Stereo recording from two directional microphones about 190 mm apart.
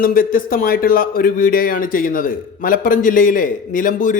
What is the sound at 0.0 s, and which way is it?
A man's voice, 45° left (ahead or behind).